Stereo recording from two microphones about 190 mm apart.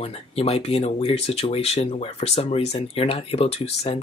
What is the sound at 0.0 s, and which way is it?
Speech, 30° left (ahead or behind).